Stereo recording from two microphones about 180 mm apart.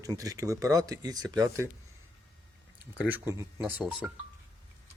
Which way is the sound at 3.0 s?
10° right (ahead or behind).